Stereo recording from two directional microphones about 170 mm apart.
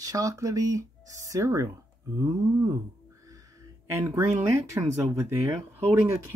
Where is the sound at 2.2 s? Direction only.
20° right (ahead or behind).